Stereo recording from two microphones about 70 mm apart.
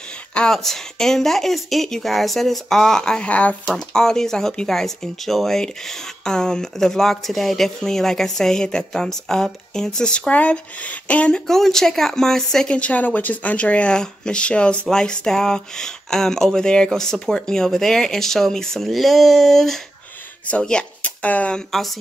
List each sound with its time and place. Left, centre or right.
0.3 s a sound: centre
0.6 s speech: centre
3.7 s speech: centre
20.4 s speech: centre